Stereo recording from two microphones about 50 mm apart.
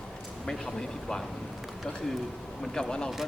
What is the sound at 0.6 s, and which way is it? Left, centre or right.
Speech, centre.